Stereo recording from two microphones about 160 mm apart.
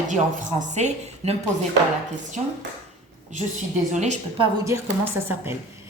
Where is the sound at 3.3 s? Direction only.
50° right (ahead or behind).